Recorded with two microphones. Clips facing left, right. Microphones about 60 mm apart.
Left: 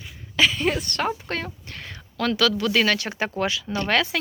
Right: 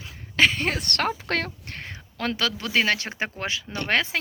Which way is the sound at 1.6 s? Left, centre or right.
Right.